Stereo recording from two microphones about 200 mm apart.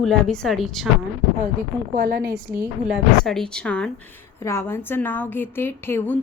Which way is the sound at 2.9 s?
Centre (ahead or behind).